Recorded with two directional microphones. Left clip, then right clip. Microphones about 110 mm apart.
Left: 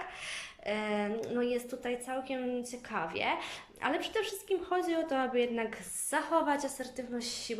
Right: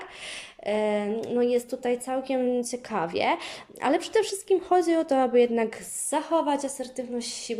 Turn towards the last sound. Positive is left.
turn(degrees=-30)  # may be behind; listen again after turning